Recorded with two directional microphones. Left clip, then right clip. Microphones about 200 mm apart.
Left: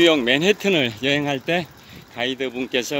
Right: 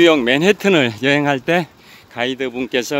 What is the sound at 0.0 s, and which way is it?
Speech, 40° right (ahead or behind).